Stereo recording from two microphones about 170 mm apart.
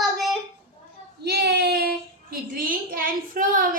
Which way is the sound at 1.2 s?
70° right (ahead or behind).